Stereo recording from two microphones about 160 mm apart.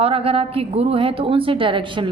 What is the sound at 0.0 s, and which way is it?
A woman's voice, 35° right (ahead or behind).